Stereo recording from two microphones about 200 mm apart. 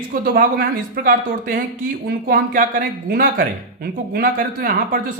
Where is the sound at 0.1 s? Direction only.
45° right (ahead or behind).